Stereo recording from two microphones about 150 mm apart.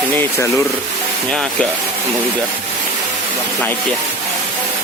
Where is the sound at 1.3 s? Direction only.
5° left (ahead or behind).